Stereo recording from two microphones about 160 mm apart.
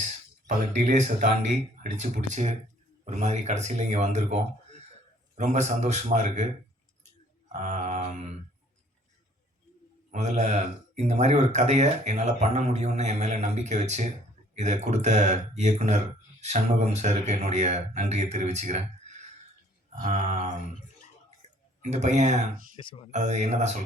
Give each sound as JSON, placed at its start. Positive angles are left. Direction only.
{"t": 0.4, "sound": "speech", "side_deg": -45}
{"t": 7.5, "sound": "speech", "side_deg": -45}
{"t": 10.1, "sound": "speech", "side_deg": -45}
{"t": 20.1, "sound": "speech", "side_deg": -45}
{"t": 21.8, "sound": "speech", "side_deg": -45}